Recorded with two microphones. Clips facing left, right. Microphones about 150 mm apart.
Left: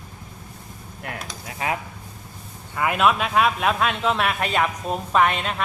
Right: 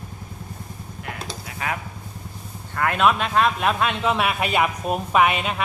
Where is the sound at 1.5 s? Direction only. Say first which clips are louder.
Left 3 dB; 30° left (ahead or behind).